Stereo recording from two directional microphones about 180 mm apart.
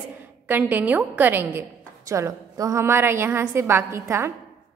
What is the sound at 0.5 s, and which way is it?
A woman's voice, 10° right (ahead or behind).